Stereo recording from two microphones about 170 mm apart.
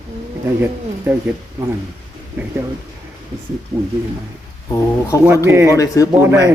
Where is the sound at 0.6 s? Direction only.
15° right (ahead or behind).